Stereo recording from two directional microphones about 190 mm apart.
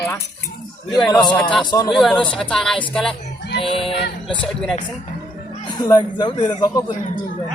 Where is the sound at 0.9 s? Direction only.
5° left (ahead or behind).